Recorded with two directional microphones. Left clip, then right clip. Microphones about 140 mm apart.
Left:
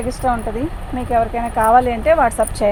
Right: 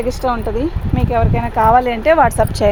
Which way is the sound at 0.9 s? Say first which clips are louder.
Left 1 dB; 90° right.